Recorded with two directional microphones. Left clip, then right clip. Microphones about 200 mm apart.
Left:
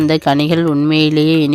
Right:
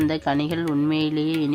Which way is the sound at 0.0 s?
45° left (ahead or behind).